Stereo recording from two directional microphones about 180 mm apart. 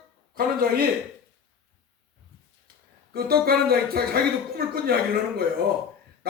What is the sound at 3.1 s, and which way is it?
A man's voice, 55° right (ahead or behind).